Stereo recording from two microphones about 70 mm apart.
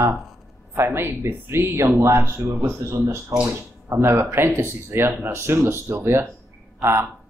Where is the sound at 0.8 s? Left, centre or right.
Right.